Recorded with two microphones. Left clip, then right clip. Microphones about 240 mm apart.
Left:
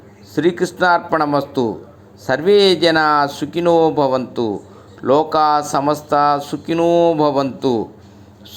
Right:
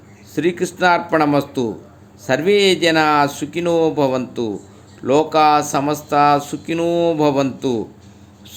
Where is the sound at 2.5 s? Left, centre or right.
Centre.